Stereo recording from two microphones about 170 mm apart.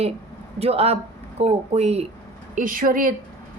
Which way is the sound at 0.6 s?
35° right (ahead or behind).